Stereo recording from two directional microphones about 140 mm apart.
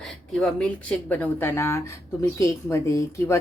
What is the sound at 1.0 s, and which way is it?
Speech, 10° left (ahead or behind).